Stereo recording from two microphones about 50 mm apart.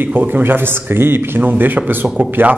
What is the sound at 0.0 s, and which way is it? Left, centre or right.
A man's voice, right.